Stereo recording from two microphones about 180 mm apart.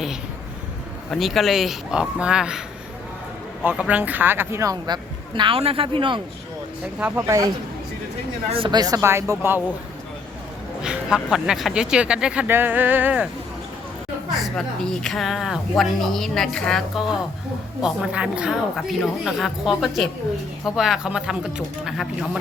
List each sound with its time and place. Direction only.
1.1 s speech: centre (ahead or behind); by 6.2 s 30° right (ahead or behind)
7.0 s speech: 10° right (ahead or behind)
8.4 s speech: 30° right (ahead or behind); by 9.6 s 15° right (ahead or behind)
10.8 s speech: 5° right (ahead or behind)
14.3 s a sound: centre (ahead or behind)
15.0 s speech: centre (ahead or behind)